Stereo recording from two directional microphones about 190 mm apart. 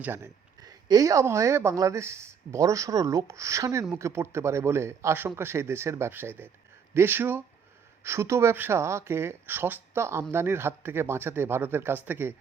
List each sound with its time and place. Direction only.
0.0 s speech: 15° right (ahead or behind)